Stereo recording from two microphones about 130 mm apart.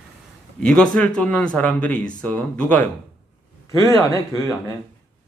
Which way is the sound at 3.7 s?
25° left (ahead or behind).